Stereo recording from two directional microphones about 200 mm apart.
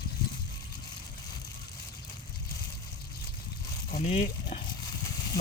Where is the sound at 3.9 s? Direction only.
35° left (ahead or behind).